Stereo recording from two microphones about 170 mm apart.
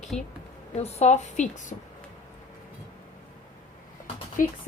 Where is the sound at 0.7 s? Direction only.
40° left (ahead or behind).